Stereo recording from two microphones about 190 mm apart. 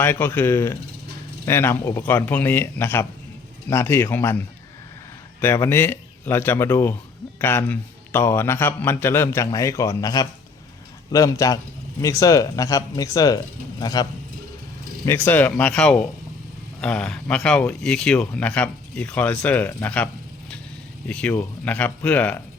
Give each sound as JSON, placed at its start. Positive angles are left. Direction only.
{"t": 0.0, "sound": "speech", "side_deg": 10}
{"t": 21.1, "sound": "speech", "side_deg": 5}